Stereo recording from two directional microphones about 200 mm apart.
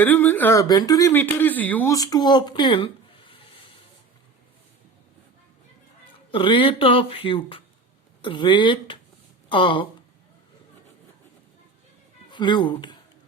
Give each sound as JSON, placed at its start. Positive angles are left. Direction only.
{"t": 0.0, "sound": "speech", "side_deg": 10}
{"t": 6.3, "sound": "speech", "side_deg": 25}
{"t": 12.3, "sound": "speech", "side_deg": 25}